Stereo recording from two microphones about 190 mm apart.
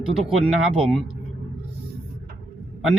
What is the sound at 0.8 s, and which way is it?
Speech, 5° left (ahead or behind).